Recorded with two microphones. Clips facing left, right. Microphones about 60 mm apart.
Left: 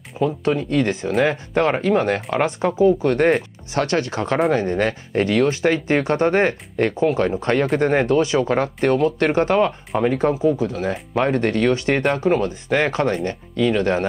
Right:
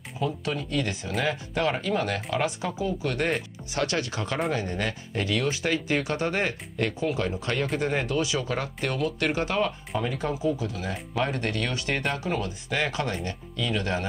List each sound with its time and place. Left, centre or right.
0.2 s speech: left
12.0 s speech: left
12.3 s speech: left